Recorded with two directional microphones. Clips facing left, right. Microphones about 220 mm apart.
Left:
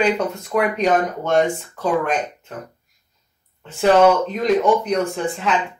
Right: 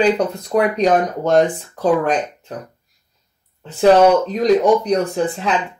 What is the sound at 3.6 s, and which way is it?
Speech, 35° right (ahead or behind).